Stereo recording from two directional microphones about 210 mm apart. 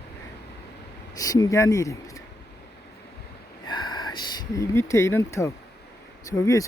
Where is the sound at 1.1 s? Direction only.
15° left (ahead or behind).